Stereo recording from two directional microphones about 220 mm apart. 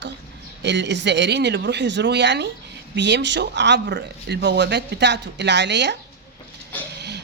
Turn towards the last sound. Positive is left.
turn(degrees=-50)  # may be behind; listen again after turning